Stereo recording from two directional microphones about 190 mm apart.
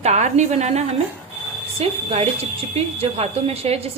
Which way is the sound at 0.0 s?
35° right (ahead or behind).